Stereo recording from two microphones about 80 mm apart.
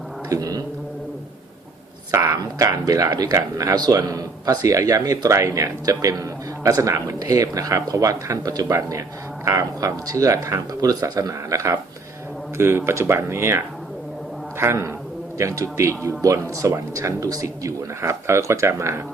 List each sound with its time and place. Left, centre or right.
0.3 s speech: right
2.1 s speech: right
12.5 s speech: right
14.6 s speech: right